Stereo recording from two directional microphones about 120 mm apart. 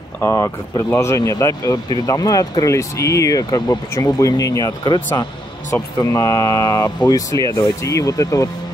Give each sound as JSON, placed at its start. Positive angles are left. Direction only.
{"t": 0.2, "sound": "speech", "side_deg": 25}
{"t": 4.8, "sound": "speech", "side_deg": 40}
{"t": 5.7, "sound": "speech", "side_deg": 25}